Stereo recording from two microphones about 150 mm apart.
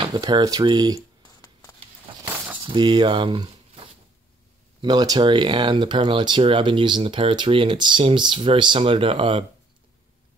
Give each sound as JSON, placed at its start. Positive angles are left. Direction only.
{"t": 0.0, "sound": "speech", "side_deg": -30}
{"t": 2.6, "sound": "speech", "side_deg": -30}